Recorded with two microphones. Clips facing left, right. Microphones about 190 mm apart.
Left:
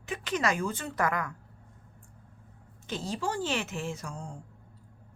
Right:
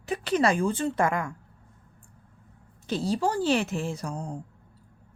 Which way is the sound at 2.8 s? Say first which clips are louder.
Right 7 dB; 35° right (ahead or behind).